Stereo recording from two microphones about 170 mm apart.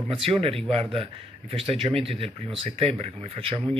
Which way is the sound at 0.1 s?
35° right (ahead or behind).